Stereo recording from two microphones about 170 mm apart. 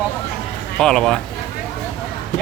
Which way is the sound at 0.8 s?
5° left (ahead or behind).